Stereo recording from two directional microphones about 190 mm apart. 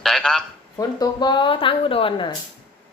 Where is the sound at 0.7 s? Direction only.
20° left (ahead or behind).